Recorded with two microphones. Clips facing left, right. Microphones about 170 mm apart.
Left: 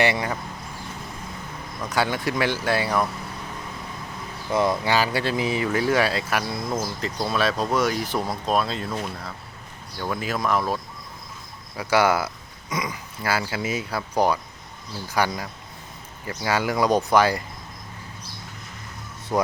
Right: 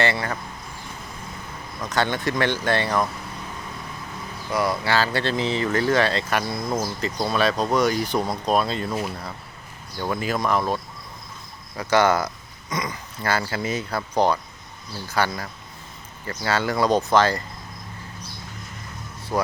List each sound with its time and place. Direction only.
0.0 s speech: 15° left (ahead or behind)
1.8 s speech: 10° left (ahead or behind)
4.5 s speech: 20° left (ahead or behind); by 10.8 s centre (ahead or behind)
11.8 s speech: 10° left (ahead or behind)
19.3 s speech: 20° left (ahead or behind)